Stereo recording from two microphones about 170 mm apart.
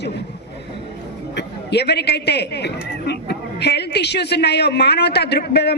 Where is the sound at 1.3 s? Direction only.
75° left (ahead or behind).